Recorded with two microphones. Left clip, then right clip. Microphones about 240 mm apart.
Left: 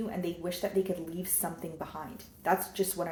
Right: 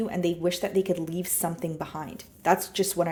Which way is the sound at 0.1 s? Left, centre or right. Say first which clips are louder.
Right 9 dB; right.